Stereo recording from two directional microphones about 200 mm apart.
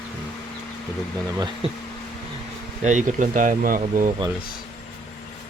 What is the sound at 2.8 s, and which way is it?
Speech, 40° right (ahead or behind).